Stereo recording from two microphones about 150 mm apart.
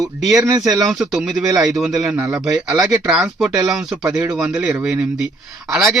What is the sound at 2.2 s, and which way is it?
Speech, 15° right (ahead or behind).